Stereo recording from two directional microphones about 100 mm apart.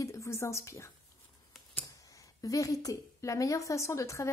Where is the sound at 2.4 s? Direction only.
35° left (ahead or behind).